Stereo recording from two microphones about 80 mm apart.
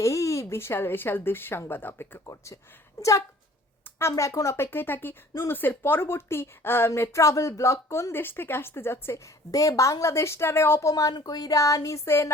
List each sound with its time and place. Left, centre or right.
0.0 s speech: left
2.2 s speech: left
9.5 s speech: left
11.1 s speech: left